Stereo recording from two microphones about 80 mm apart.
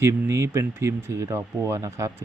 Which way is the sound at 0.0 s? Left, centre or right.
Right.